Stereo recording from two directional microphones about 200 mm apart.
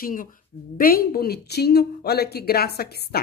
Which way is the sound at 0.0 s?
45° left (ahead or behind).